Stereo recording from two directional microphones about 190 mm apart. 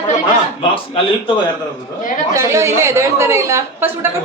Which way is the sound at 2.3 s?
15° right (ahead or behind).